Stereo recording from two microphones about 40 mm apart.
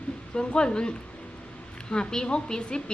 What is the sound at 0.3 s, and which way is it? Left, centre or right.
A woman's voice, left.